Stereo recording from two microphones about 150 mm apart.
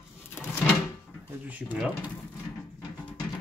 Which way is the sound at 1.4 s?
10° right (ahead or behind).